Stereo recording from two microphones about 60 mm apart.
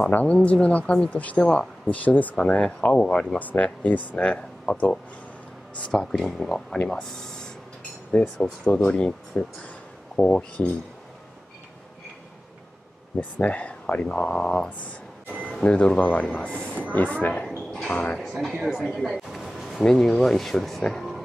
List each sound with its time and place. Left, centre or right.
0.1 s speech: left
3.3 s speech: left
5.8 s speech: centre
13.2 s speech: left
18.5 s speech: centre
19.1 s a sound: centre
19.8 s speech: centre